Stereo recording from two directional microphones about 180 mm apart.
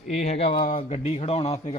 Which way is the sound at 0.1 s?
40° left (ahead or behind).